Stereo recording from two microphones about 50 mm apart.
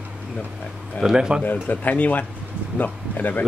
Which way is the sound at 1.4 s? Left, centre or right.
Left.